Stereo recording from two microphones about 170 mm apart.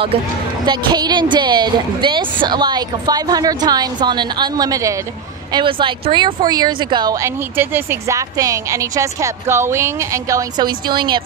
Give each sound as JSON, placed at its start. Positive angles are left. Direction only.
{"t": 0.7, "sound": "speech", "side_deg": -25}